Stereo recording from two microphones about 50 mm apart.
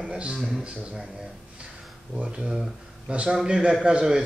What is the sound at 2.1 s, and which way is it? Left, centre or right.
Speech, centre.